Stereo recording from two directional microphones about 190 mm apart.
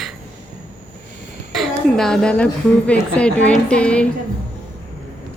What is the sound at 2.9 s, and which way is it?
A woman's voice, 5° left (ahead or behind).